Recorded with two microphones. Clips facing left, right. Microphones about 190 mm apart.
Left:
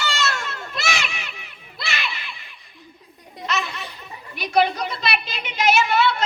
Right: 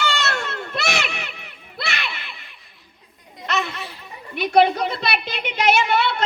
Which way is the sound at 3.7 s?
Centre (ahead or behind).